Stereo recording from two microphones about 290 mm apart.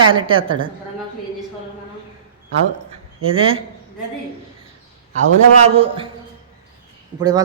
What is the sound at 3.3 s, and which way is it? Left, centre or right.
Speech, centre.